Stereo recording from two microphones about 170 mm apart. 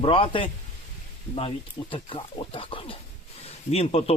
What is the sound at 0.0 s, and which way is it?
Speech, 30° left (ahead or behind).